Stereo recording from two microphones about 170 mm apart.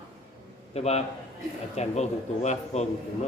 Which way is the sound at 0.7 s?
40° left (ahead or behind).